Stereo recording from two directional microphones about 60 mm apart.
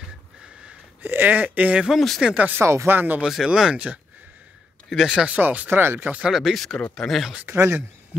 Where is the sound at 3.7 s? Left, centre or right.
Right.